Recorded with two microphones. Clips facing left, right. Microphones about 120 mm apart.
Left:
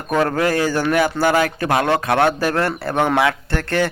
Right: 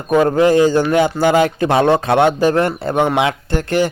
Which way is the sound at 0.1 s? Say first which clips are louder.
Right 6 dB; 20° right (ahead or behind).